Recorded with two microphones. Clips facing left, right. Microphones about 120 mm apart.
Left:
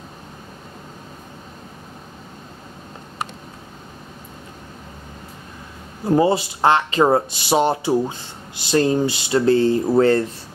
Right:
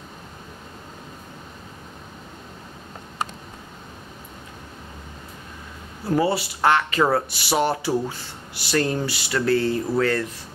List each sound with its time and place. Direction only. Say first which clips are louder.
6.0 s speech: left 5 dB; 20° left (ahead or behind)